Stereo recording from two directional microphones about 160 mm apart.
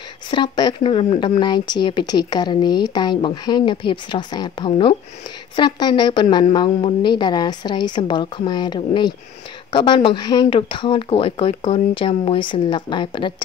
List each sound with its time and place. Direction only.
0.3 s speech: 30° left (ahead or behind)